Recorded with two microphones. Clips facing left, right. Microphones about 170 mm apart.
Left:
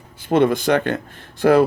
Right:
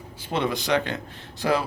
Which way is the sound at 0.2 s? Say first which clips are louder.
Left 10 dB; 50° left (ahead or behind).